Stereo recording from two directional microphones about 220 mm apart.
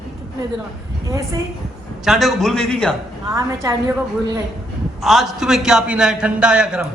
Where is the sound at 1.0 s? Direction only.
15° right (ahead or behind).